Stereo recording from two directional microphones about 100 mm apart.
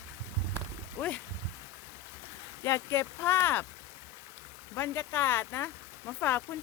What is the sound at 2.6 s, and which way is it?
Speech, 25° left (ahead or behind).